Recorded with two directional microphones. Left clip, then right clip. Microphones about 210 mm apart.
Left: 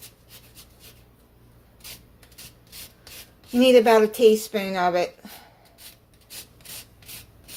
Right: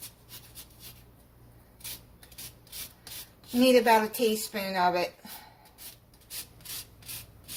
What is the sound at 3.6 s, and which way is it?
A woman's voice, 40° left (ahead or behind).